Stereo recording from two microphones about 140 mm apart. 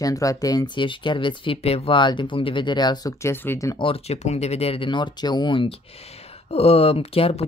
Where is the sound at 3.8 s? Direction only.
45° left (ahead or behind).